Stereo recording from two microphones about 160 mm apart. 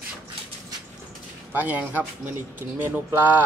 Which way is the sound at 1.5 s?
10° right (ahead or behind).